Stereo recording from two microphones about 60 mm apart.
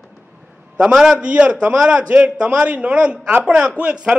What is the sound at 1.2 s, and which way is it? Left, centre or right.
A man's voice, right.